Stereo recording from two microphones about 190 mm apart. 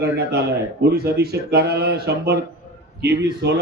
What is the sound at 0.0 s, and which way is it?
Speech, 60° right (ahead or behind).